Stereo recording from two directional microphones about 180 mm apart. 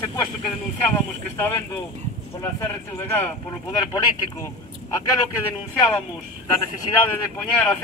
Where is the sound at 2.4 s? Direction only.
15° left (ahead or behind).